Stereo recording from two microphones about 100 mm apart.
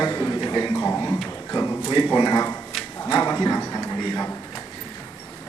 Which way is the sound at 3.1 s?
35° left (ahead or behind).